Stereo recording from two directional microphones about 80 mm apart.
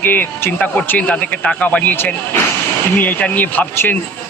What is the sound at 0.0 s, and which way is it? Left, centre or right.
A man's voice, left.